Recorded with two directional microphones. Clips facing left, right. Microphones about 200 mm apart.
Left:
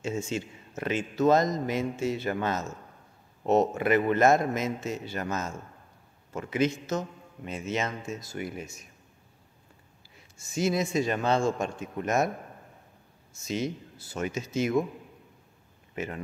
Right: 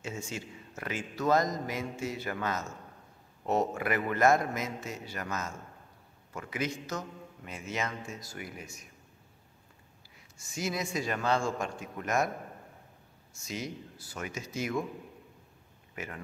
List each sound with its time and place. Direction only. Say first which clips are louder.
0.0 s a man's voice: left 8 dB; 25° left (ahead or behind)
10.4 s a man's voice: left 7 dB; 25° left (ahead or behind)
13.4 s a man's voice: left 7 dB; 25° left (ahead or behind)
15.9 s speech: left 7 dB; 25° left (ahead or behind)